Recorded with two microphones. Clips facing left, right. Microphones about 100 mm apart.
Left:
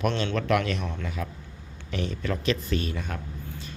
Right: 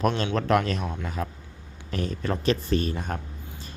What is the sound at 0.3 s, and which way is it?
Speech, 35° right (ahead or behind).